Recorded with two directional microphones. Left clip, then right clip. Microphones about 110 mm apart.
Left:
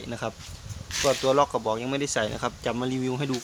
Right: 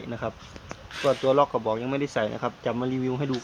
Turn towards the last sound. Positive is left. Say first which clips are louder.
# right 1 dB
turn(degrees=40)  # may be behind; listen again after turning